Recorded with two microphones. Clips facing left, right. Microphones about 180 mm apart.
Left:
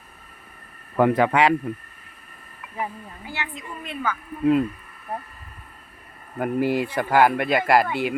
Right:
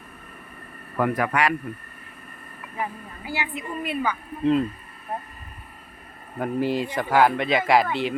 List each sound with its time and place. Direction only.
0.9 s speech: 25° left (ahead or behind)
3.2 s a woman's voice: 5° right (ahead or behind)
6.4 s speech: 10° left (ahead or behind)